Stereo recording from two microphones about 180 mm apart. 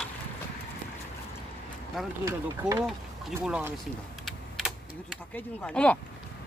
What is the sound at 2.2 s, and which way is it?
Speech, 15° right (ahead or behind).